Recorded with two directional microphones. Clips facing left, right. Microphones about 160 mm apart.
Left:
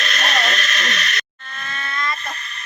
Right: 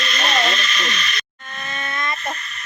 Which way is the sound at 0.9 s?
65° left (ahead or behind).